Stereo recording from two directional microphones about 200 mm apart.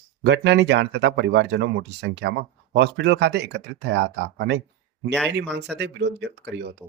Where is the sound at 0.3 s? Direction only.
60° right (ahead or behind).